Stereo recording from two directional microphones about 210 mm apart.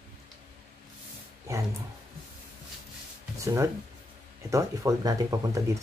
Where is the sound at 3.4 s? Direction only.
15° right (ahead or behind).